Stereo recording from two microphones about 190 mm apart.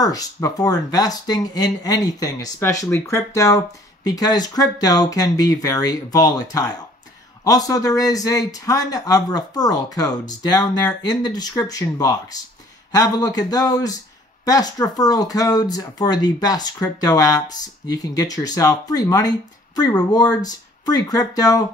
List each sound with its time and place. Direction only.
0.0 s speech: 20° left (ahead or behind)